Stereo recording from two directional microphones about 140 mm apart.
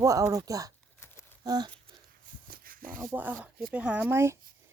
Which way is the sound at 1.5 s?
30° right (ahead or behind).